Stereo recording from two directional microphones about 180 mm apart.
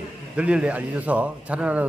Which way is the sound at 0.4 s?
5° right (ahead or behind).